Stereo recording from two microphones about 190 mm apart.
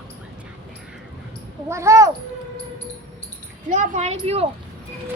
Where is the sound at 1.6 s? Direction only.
15° right (ahead or behind).